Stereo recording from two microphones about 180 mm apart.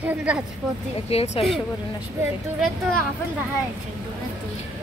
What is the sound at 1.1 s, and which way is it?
Speech, 35° left (ahead or behind).